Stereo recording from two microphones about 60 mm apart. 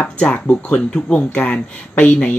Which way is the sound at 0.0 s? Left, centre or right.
Left.